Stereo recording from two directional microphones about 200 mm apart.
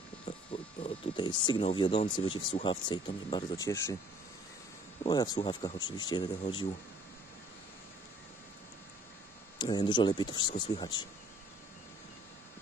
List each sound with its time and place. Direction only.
0.2 s speech: 25° left (ahead or behind)
5.0 s speech: 20° left (ahead or behind)
9.6 s speech: 20° left (ahead or behind)